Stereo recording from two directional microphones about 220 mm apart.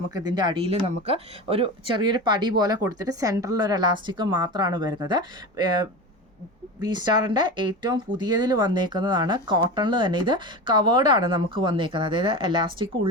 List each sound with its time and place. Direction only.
0.1 s speech: 15° right (ahead or behind)
6.8 s speech: 20° right (ahead or behind)